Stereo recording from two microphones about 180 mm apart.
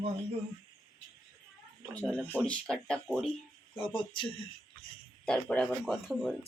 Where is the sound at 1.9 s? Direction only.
5° left (ahead or behind).